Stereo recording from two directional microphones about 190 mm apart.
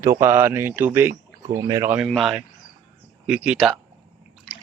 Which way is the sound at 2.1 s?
Centre (ahead or behind).